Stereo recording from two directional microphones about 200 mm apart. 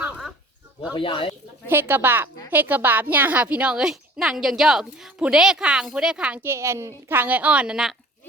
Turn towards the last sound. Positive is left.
turn(degrees=0)  # may be behind; listen again after turning